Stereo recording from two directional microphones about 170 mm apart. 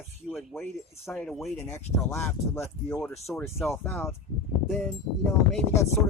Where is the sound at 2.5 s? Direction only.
15° left (ahead or behind).